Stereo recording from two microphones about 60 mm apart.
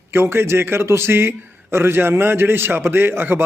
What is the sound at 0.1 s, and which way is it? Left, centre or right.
Speech, right.